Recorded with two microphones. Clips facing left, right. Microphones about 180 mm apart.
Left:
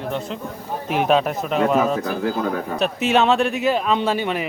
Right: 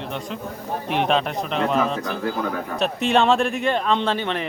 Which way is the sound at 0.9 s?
5° left (ahead or behind).